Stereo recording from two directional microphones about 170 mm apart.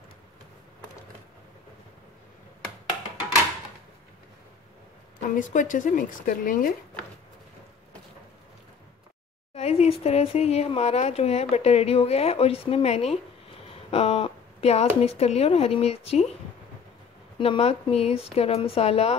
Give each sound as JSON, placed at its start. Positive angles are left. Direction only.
{"t": 5.3, "sound": "speech", "side_deg": 50}
{"t": 9.6, "sound": "a sound", "side_deg": 40}
{"t": 10.0, "sound": "a woman's voice", "side_deg": 40}
{"t": 17.4, "sound": "a woman's voice", "side_deg": 35}